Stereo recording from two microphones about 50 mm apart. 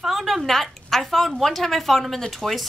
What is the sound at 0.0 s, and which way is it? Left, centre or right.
A woman's voice, centre.